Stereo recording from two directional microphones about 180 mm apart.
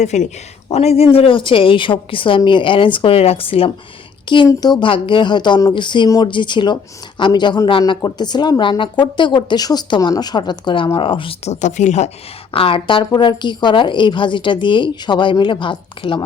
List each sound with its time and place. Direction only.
0.0 s a woman's voice: 40° left (ahead or behind)
12.5 s a woman's voice: 30° left (ahead or behind)